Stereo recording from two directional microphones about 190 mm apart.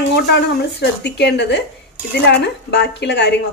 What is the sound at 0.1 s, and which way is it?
A woman's voice, 60° left (ahead or behind).